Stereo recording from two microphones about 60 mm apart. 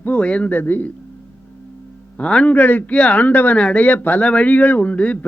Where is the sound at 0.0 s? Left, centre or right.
Left.